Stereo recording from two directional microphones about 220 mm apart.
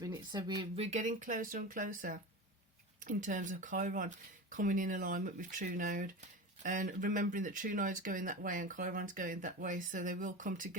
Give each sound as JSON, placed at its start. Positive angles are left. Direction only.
{"t": 0.0, "sound": "speech", "side_deg": -20}